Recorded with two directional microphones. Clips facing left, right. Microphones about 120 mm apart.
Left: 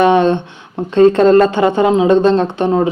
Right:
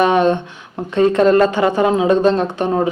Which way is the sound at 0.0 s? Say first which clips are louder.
Left 3 dB; 25° left (ahead or behind).